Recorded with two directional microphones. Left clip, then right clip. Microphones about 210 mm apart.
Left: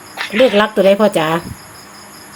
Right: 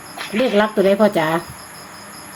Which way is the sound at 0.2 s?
25° left (ahead or behind).